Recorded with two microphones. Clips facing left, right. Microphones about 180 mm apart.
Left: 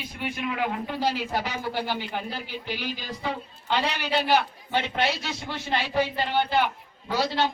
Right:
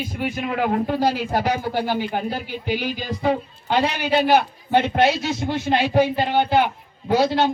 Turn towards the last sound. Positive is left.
turn(degrees=-50)  # may be behind; listen again after turning